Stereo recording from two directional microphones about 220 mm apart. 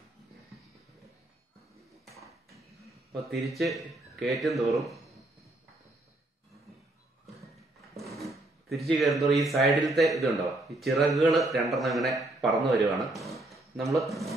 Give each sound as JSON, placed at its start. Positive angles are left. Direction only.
{"t": 3.2, "sound": "a man's voice", "side_deg": 0}
{"t": 8.2, "sound": "a man's voice", "side_deg": 0}